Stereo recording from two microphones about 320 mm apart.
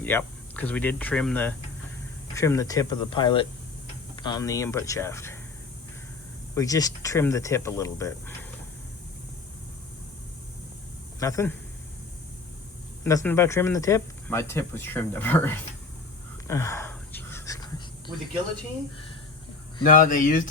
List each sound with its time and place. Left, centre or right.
0.0 s speech: centre
6.5 s speech: centre
11.2 s speech: centre
13.1 s speech: centre
16.5 s a sound: centre
19.8 s speech: left